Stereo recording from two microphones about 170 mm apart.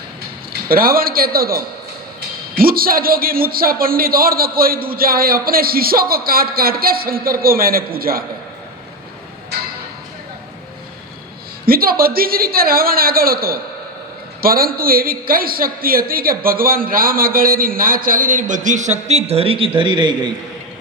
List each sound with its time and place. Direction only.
0.7 s a woman's voice: 60° right (ahead or behind)
11.6 s a woman's voice: 60° right (ahead or behind); by 20.3 s 25° right (ahead or behind)